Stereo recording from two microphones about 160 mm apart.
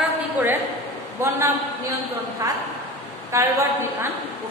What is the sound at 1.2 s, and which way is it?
Speech, 15° right (ahead or behind).